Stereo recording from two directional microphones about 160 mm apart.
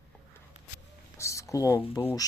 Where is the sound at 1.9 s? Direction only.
20° left (ahead or behind).